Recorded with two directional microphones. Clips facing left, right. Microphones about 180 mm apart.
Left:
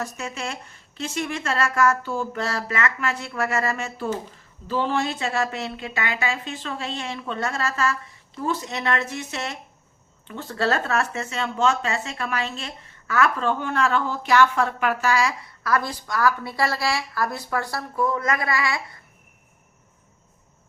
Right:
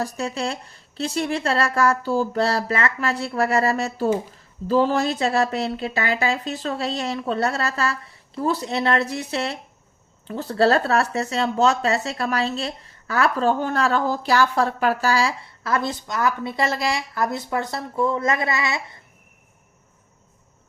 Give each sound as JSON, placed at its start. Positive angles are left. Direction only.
{"t": 0.0, "sound": "speech", "side_deg": -35}